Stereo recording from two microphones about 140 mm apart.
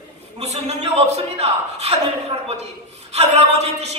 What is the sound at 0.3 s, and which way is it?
A man's voice, 50° right (ahead or behind).